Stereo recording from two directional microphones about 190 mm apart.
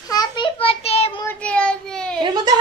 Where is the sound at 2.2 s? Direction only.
25° right (ahead or behind).